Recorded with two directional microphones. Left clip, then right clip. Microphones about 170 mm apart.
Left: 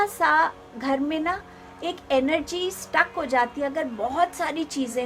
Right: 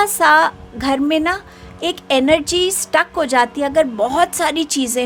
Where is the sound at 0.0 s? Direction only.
65° right (ahead or behind).